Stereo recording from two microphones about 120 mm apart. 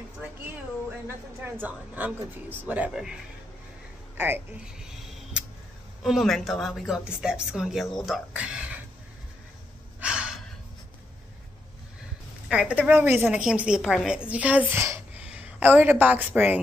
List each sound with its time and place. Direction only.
1.0 s a woman's voice: 15° right (ahead or behind)
4.7 s a sound: 5° right (ahead or behind)
6.0 s a woman's voice: centre (ahead or behind)
9.9 s gasp: 10° right (ahead or behind)
12.4 s a woman's voice: 10° right (ahead or behind)